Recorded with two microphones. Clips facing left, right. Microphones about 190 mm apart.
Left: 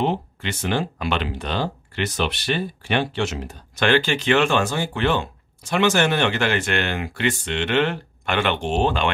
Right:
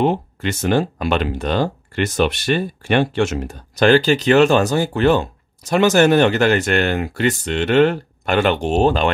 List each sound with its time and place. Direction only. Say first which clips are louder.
0.0 s speech: right 5 dB; 45° right (ahead or behind)